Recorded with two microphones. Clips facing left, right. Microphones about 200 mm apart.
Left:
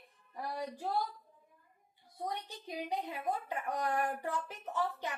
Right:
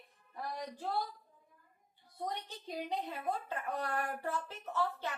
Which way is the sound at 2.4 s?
15° left (ahead or behind).